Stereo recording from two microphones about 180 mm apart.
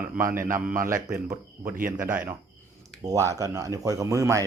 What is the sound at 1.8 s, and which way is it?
Speech, 50° right (ahead or behind).